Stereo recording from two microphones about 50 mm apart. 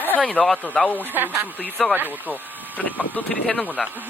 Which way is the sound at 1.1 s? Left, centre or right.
Right.